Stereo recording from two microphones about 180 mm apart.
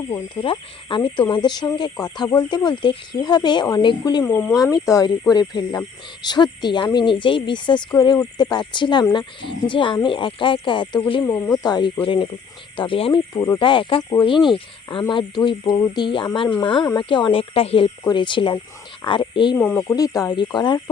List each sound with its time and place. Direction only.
0.1 s speech: 30° left (ahead or behind)
4.3 s speech: 5° left (ahead or behind)
4.7 s speech: 20° left (ahead or behind)
11.3 s speech: 15° left (ahead or behind)
19.5 s speech: 5° left (ahead or behind)
20.0 s speech: 20° left (ahead or behind)